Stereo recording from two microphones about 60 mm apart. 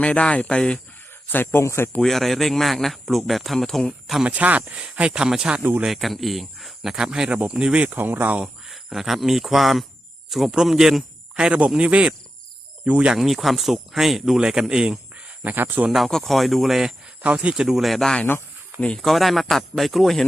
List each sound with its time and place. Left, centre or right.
0.0 s speech: centre
1.3 s speech: left
1.6 s speech: left
2.0 s speech: centre
4.2 s speech: right
5.8 s speech: centre
7.9 s speech: right
8.6 s speech: centre
13.1 s speech: centre
15.4 s speech: right
16.0 s speech: centre
17.2 s speech: centre
18.8 s speech: centre
19.0 s speech: centre